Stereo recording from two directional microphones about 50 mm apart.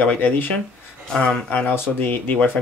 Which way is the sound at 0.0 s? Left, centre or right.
Left.